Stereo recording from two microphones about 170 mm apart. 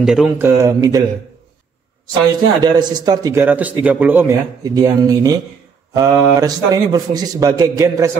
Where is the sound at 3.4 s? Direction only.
10° right (ahead or behind).